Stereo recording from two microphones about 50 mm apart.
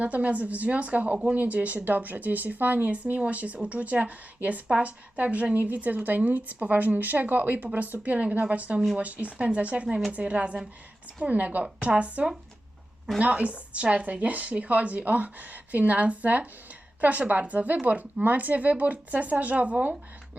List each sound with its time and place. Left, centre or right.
0.0 s a woman's voice: right